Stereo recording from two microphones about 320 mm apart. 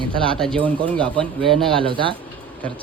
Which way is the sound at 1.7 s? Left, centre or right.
Centre.